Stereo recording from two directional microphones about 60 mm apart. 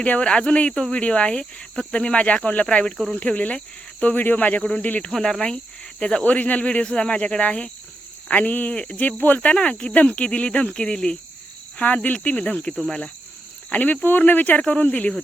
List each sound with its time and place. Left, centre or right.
0.0 s speech: centre
0.7 s cricket: centre
3.2 s speech: left
5.1 s cricket: centre
6.2 s speech: left